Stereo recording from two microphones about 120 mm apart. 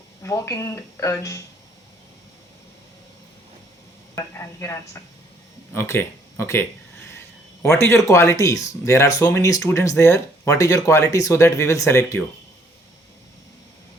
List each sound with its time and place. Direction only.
0.2 s speech: 25° left (ahead or behind)
4.1 s speech: 25° left (ahead or behind)